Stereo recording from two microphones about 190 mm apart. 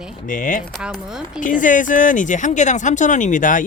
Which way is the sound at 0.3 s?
45° left (ahead or behind).